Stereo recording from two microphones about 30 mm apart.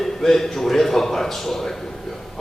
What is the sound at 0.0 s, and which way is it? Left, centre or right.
A man's voice, centre.